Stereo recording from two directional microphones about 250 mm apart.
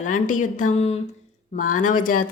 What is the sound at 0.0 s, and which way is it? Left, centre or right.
Speech, left.